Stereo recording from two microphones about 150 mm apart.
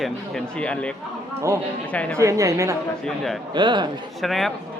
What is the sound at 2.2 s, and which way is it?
Speech, 20° right (ahead or behind).